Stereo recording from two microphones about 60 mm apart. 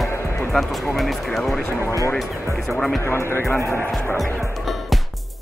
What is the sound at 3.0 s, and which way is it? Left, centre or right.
Speech, left.